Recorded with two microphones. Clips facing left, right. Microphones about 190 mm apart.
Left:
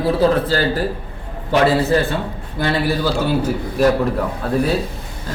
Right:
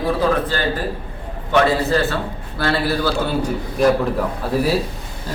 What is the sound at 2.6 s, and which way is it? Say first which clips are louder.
Speech: left 1 dB; 15° left (ahead or behind).